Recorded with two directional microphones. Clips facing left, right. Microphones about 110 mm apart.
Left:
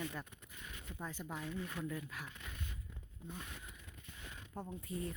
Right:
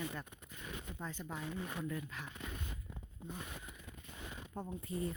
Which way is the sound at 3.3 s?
15° right (ahead or behind).